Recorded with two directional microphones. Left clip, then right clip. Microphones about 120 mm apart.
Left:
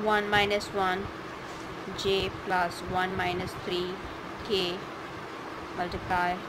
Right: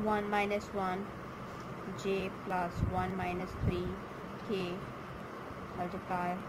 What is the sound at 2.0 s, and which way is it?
Speech, 5° left (ahead or behind).